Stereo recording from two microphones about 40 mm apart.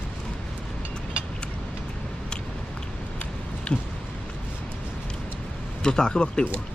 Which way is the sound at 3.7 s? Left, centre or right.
Left.